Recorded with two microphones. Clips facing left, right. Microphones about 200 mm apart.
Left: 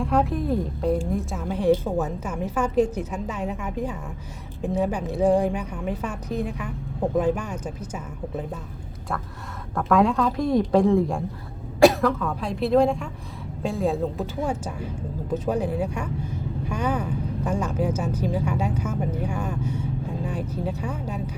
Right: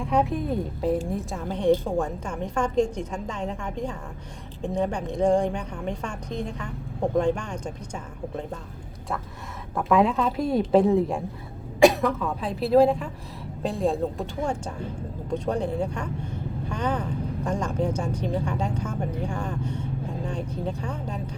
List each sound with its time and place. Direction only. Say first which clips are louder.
0.0 s a woman's voice: left 1 dB; centre (ahead or behind)
9.7 s a woman's voice: left 1 dB; centre (ahead or behind)
10.4 s a woman's voice: left 3 dB; 25° right (ahead or behind)
10.7 s a woman's voice: right 3 dB; 5° right (ahead or behind)